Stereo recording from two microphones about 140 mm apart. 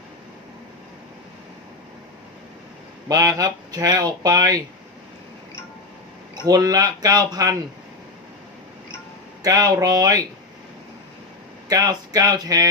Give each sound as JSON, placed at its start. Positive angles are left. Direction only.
{"t": 3.1, "sound": "speech", "side_deg": -25}
{"t": 6.3, "sound": "speech", "side_deg": -25}
{"t": 9.4, "sound": "speech", "side_deg": -25}
{"t": 11.7, "sound": "speech", "side_deg": -25}